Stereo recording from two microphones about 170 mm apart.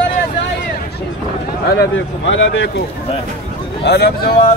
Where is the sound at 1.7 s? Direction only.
80° left.